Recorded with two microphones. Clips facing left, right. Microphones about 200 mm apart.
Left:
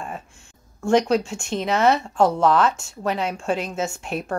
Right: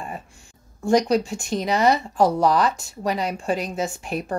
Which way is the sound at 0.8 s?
Centre (ahead or behind).